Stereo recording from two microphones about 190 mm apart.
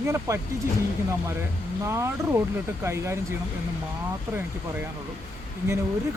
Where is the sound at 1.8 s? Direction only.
15° right (ahead or behind).